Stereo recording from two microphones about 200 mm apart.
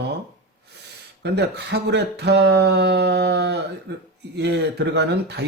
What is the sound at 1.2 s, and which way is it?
Speech, 55° right (ahead or behind).